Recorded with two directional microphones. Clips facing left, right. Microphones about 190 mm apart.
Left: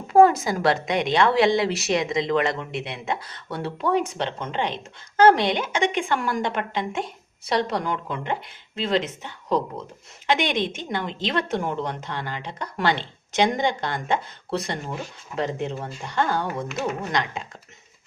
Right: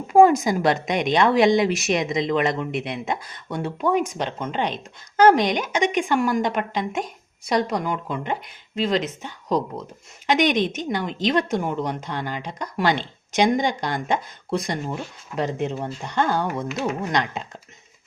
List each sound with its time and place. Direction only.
0.1 s a woman's voice: 15° right (ahead or behind)
10.2 s a woman's voice: 15° right (ahead or behind)